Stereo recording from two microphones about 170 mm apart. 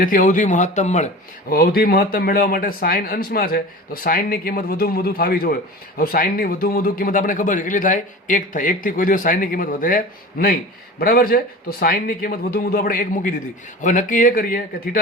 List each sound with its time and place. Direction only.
0.0 s a man's voice: 55° left (ahead or behind)
1.5 s a man's voice: 60° left (ahead or behind)